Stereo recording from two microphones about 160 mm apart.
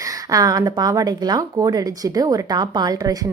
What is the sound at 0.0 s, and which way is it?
A woman's voice, 20° right (ahead or behind).